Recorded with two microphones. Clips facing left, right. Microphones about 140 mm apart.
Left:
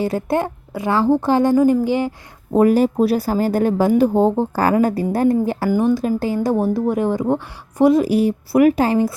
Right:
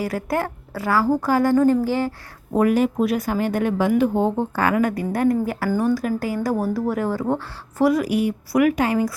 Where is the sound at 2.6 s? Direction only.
35° left (ahead or behind).